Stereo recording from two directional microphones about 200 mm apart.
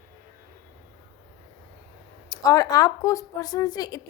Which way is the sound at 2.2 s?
15° left (ahead or behind).